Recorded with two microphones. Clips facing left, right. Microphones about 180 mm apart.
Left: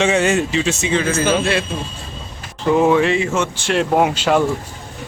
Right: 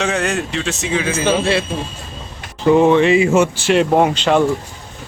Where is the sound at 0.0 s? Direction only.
Centre (ahead or behind).